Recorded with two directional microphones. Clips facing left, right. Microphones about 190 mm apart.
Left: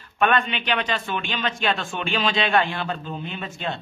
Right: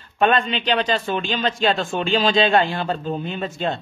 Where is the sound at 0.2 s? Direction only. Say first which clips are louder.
Right 3 dB; 30° right (ahead or behind).